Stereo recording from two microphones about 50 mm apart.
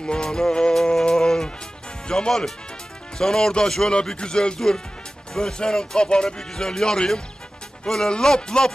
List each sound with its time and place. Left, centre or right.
0.0 s music: centre
2.0 s speech: centre